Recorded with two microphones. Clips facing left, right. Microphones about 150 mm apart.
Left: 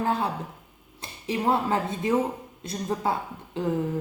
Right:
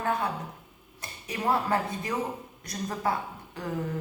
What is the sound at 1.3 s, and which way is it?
Speech, 25° left (ahead or behind).